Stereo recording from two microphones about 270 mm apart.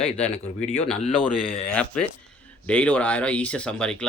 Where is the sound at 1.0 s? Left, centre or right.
Left.